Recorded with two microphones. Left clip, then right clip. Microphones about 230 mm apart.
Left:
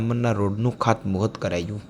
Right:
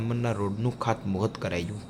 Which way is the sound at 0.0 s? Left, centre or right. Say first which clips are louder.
Left 6 dB; centre.